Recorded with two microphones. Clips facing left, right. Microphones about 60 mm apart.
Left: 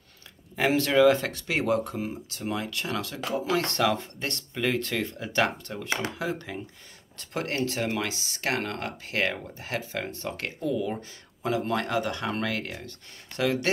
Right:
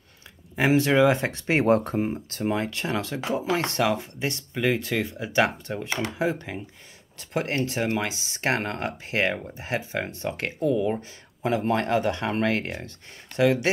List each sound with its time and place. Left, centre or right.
0.6 s speech: centre
1.4 s speech: right